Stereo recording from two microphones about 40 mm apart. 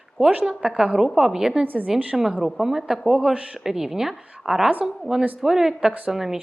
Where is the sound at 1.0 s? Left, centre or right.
Centre.